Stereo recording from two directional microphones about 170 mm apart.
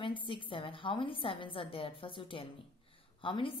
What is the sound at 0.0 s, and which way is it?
A woman's voice, 30° left (ahead or behind).